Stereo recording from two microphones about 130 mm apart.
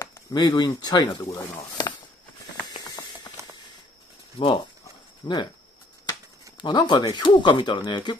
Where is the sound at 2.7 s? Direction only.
35° left (ahead or behind).